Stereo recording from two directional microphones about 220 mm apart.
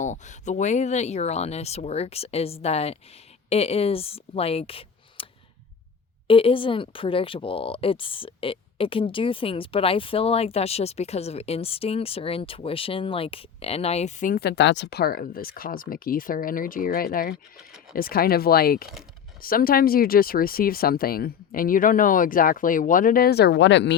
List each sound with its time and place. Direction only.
0.0 s speech: 35° left (ahead or behind)
6.2 s speech: 25° left (ahead or behind); by 23.9 s 55° left (ahead or behind)